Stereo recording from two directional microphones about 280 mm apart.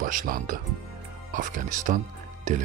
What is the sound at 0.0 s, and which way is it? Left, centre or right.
Speech, right.